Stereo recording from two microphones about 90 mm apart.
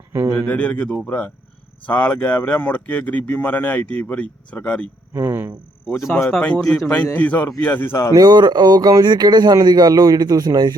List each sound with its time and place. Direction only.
0.3 s a man's voice: 15° left (ahead or behind)
5.1 s speech: 25° right (ahead or behind)
6.3 s a man's voice: 10° left (ahead or behind); by 8.1 s 25° left (ahead or behind)
8.1 s speech: 45° right (ahead or behind)